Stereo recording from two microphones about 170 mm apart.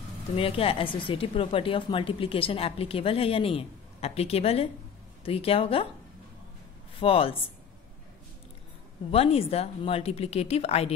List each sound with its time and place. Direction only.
0.4 s a woman's voice: 35° left (ahead or behind)
7.0 s a woman's voice: 35° left (ahead or behind)
9.1 s a woman's voice: 35° left (ahead or behind)